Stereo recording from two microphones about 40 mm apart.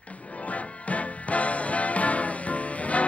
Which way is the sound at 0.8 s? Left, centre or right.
Left.